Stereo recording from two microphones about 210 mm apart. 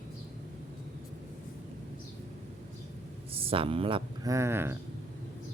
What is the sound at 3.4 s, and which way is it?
Speech, 25° right (ahead or behind).